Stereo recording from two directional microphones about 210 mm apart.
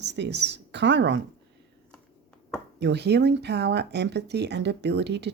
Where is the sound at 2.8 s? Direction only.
55° right (ahead or behind).